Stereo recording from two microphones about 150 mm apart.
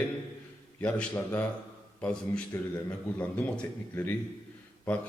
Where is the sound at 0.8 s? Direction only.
10° left (ahead or behind).